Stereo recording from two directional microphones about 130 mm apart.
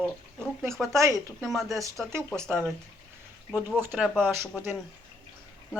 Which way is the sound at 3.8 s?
10° right (ahead or behind).